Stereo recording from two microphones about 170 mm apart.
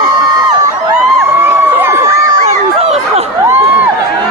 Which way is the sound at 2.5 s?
35° right (ahead or behind).